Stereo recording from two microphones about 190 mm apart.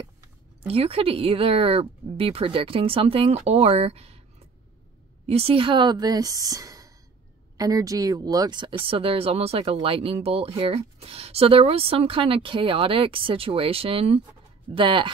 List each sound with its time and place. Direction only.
0.7 s speech: 30° right (ahead or behind)
5.2 s speech: 30° right (ahead or behind)